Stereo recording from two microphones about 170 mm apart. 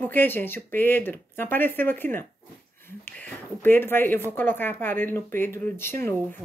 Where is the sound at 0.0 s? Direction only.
10° left (ahead or behind).